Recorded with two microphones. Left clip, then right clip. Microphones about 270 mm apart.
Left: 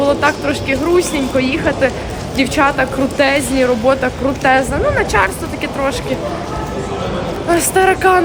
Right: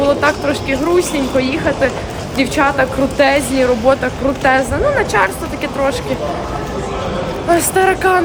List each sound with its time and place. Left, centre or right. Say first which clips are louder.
0.0 s speech: even; centre
7.4 s speech: even; centre